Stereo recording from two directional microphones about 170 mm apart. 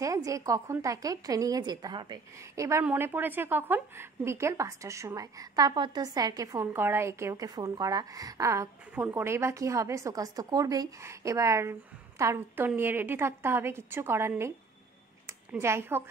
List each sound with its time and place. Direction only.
0.0 s a woman's voice: 20° right (ahead or behind)